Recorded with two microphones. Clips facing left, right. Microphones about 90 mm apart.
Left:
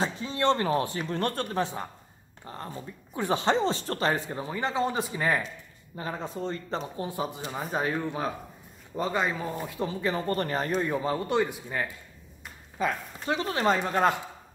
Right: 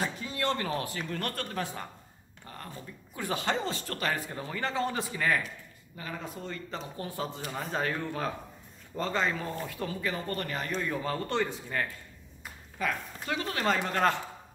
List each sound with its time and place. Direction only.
0.0 s speech: 25° left (ahead or behind)
7.1 s speech: 15° left (ahead or behind)
13.7 s speech: 15° left (ahead or behind)